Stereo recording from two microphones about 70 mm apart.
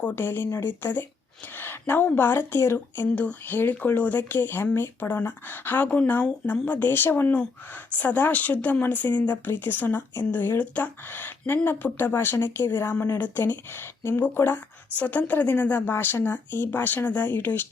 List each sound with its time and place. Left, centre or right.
0.0 s speech: left
3.2 s speech: left